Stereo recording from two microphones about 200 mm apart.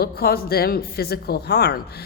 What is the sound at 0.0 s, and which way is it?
A woman's voice, 50° left (ahead or behind).